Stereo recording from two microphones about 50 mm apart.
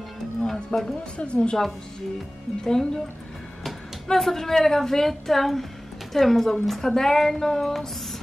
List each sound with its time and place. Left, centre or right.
0.4 s music: centre
1.1 s a woman's voice: left
2.6 s speech: centre